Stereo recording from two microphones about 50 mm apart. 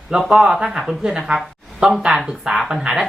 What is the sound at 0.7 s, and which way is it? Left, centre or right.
Speech, centre.